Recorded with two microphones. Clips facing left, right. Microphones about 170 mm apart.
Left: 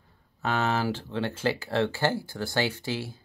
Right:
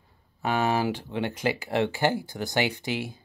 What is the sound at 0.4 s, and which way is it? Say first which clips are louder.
Speech: right 2 dB; 10° right (ahead or behind).